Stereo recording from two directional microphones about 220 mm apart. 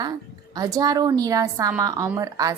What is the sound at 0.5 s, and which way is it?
A woman's voice, 15° right (ahead or behind).